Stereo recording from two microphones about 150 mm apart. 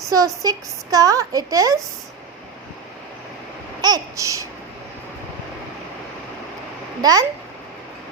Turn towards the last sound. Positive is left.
turn(degrees=-25)  # may be behind; listen again after turning